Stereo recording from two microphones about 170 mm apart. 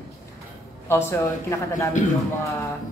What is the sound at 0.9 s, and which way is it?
Speech, 15° left (ahead or behind).